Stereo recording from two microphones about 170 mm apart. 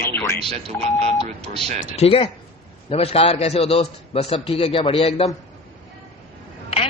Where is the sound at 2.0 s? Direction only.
35° left (ahead or behind).